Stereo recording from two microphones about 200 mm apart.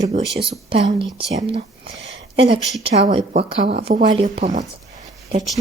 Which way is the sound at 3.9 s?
40° right (ahead or behind).